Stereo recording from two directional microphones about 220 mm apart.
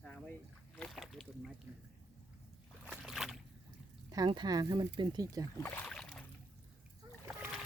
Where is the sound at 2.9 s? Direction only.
Centre (ahead or behind).